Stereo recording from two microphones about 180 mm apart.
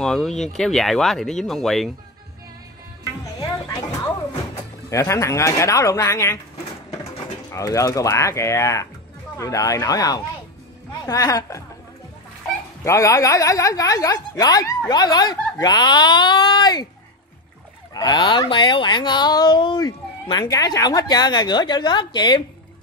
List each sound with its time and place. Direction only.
0.0 s speech: 5° left (ahead or behind)
3.3 s music: 20° left (ahead or behind)
4.8 s speech: 15° left (ahead or behind)
7.5 s speech: 20° left (ahead or behind)
12.8 s speech: 15° left (ahead or behind)
17.9 s speech: 20° left (ahead or behind)